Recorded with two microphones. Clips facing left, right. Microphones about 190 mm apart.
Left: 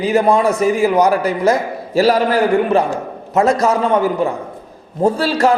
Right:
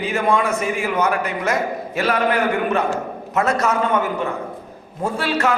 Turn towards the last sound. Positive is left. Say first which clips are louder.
# left 6 dB
turn(degrees=35)  # may be behind; listen again after turning